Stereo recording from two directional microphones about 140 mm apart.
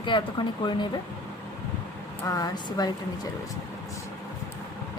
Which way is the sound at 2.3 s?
25° left (ahead or behind).